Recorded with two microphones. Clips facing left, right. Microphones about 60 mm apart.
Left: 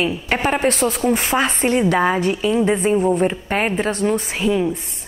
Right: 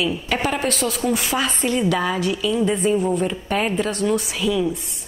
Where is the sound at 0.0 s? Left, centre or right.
Left.